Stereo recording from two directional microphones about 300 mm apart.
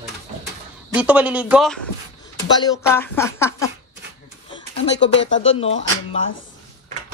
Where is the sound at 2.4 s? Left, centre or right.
Centre.